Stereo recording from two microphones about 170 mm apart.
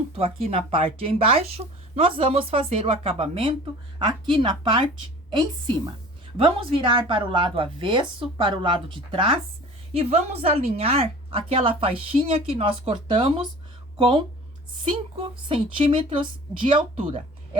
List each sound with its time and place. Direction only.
0.2 s a woman's voice: 35° right (ahead or behind)
15.4 s a woman's voice: 30° right (ahead or behind)